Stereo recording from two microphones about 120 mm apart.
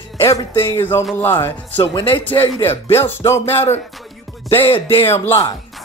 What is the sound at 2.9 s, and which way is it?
Speech, 20° left (ahead or behind).